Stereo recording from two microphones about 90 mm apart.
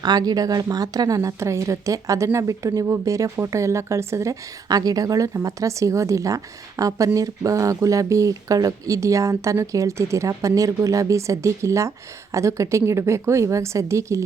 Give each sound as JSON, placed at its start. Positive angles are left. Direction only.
{"t": 0.0, "sound": "speech", "side_deg": -50}